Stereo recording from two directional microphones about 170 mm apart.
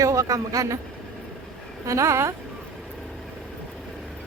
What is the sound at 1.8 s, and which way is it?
Speech, 20° right (ahead or behind).